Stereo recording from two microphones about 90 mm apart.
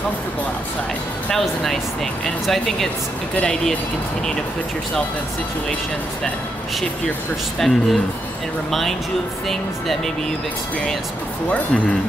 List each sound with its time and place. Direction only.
1.3 s speech: centre (ahead or behind)
7.5 s speech: 5° left (ahead or behind)
9.5 s speech: 5° left (ahead or behind)
11.4 s speech: 15° left (ahead or behind)